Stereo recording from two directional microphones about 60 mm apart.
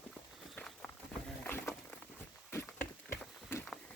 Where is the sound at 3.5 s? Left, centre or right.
Left.